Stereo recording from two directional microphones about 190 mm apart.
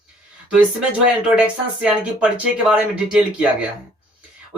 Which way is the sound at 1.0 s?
5° right (ahead or behind).